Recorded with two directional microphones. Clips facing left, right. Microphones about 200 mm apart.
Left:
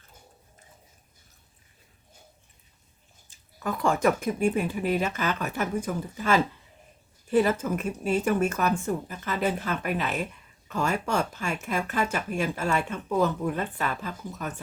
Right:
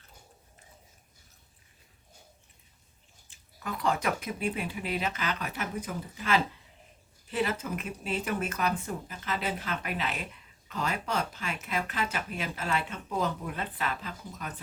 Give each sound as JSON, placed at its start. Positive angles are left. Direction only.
{"t": 3.2, "sound": "speech", "side_deg": 45}